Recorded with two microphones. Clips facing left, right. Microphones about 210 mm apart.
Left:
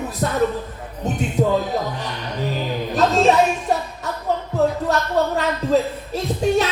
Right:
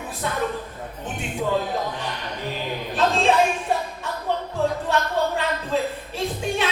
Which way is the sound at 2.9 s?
40° left (ahead or behind).